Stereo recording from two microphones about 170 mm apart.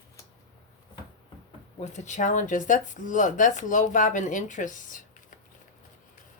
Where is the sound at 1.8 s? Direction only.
40° left (ahead or behind).